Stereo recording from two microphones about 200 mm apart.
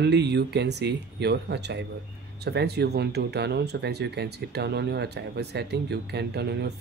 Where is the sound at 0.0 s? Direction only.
60° right (ahead or behind).